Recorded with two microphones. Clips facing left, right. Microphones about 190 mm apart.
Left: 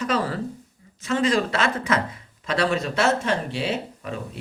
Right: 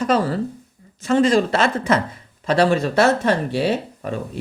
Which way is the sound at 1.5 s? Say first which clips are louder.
Right 5 dB; 30° right (ahead or behind).